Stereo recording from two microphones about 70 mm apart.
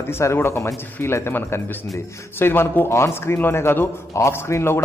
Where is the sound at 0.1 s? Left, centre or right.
Left.